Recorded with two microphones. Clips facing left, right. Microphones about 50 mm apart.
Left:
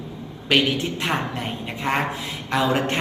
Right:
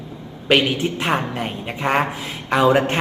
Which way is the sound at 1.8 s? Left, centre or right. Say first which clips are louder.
Right 4 dB; right.